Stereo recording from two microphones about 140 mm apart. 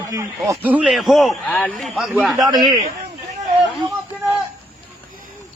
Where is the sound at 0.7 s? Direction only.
5° right (ahead or behind).